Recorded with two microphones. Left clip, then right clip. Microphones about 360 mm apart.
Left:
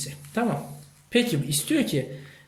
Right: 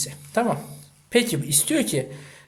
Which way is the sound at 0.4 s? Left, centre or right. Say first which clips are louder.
Right 4 dB; centre.